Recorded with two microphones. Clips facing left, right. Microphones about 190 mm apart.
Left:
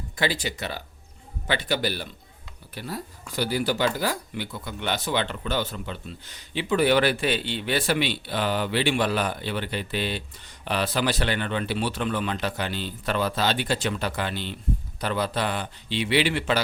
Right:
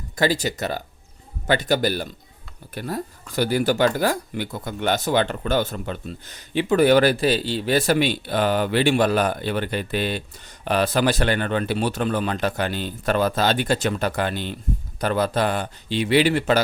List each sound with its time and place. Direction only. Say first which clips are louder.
0.2 s speech: right 6 dB; 40° right (ahead or behind)